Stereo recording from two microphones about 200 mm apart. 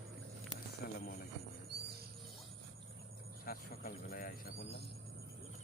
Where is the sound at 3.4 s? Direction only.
50° left (ahead or behind).